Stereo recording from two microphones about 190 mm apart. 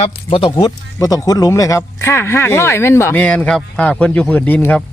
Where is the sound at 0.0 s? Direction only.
30° left (ahead or behind).